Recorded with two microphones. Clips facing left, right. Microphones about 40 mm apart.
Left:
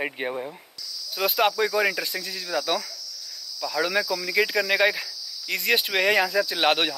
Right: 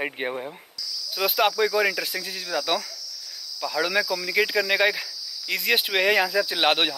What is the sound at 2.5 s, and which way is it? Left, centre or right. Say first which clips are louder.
Speech: even; right.